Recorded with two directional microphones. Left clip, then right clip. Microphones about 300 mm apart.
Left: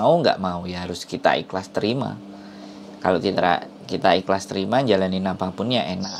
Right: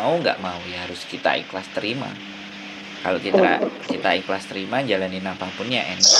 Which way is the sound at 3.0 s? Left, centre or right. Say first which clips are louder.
Right 2 dB; left.